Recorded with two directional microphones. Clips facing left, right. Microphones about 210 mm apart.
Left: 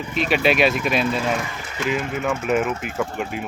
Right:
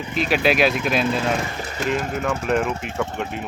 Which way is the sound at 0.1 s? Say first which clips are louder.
Even; centre (ahead or behind).